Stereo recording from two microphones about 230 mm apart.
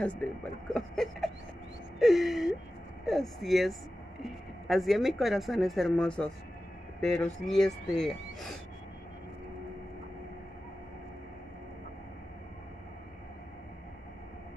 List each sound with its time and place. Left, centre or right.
0.0 s speech: centre
2.0 s a sound: centre
3.1 s a woman's voice: centre